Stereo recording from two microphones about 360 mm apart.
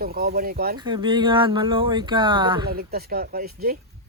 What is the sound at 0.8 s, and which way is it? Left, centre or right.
Speech, centre.